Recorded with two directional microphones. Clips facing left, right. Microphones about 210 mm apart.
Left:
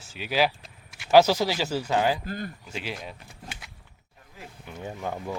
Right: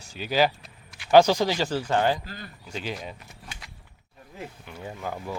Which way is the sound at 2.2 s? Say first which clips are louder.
Left 8 dB; 50° left (ahead or behind).